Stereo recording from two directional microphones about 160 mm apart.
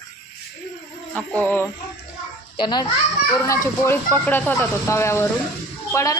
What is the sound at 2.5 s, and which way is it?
Speech, 30° left (ahead or behind).